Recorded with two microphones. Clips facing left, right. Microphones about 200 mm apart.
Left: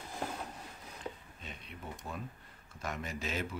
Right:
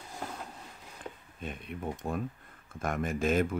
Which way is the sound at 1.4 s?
50° right (ahead or behind).